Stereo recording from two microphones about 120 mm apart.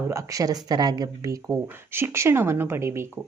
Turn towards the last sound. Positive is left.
turn(degrees=-20)  # may be behind; listen again after turning